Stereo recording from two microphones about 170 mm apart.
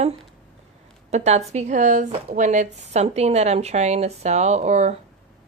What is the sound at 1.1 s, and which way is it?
A woman's voice, 40° right (ahead or behind).